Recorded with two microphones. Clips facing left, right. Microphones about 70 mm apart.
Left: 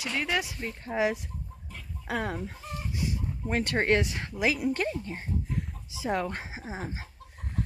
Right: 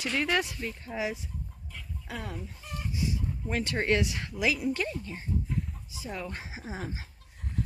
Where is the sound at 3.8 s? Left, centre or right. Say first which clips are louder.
Left 2 dB; left.